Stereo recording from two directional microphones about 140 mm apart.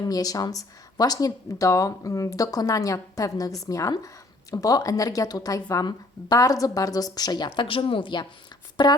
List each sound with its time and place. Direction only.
0.0 s speech: 25° left (ahead or behind)